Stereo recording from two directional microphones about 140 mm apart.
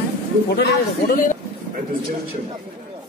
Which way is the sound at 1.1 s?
85° left.